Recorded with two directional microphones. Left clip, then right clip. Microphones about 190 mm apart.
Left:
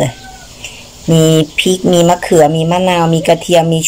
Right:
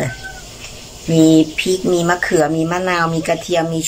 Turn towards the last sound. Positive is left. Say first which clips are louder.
# left 7 dB
turn(degrees=20)  # may be behind; listen again after turning